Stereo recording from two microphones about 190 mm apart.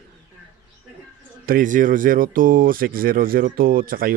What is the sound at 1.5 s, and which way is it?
Speech, 45° right (ahead or behind).